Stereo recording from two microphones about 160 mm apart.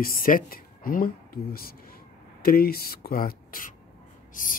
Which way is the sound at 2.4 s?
70° left (ahead or behind).